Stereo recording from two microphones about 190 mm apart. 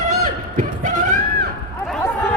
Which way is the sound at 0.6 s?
40° right (ahead or behind).